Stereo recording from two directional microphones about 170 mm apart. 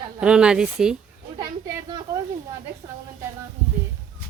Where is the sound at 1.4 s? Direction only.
25° right (ahead or behind).